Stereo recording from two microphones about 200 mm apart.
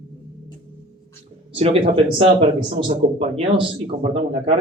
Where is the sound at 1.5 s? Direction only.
30° right (ahead or behind).